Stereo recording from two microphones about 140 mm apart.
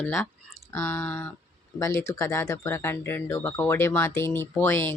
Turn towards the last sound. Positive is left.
turn(degrees=15)  # may be behind; listen again after turning